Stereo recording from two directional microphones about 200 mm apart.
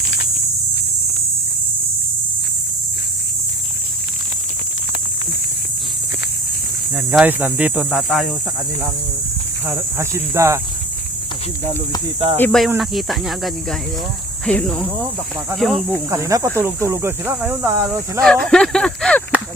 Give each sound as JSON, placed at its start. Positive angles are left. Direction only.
{"t": 6.9, "sound": "speech", "side_deg": -5}
{"t": 10.0, "sound": "speech", "side_deg": -15}
{"t": 12.0, "sound": "speech", "side_deg": -25}
{"t": 12.4, "sound": "speech", "side_deg": 5}
{"t": 16.0, "sound": "speech", "side_deg": -15}
{"t": 18.2, "sound": "speech", "side_deg": 5}